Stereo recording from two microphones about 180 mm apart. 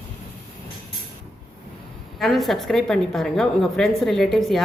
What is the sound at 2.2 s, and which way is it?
A woman's voice, centre (ahead or behind).